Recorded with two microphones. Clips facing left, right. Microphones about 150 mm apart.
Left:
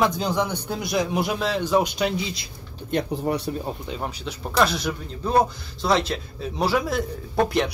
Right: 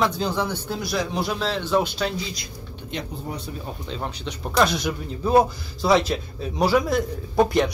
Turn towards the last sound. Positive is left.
turn(degrees=0)  # may be behind; listen again after turning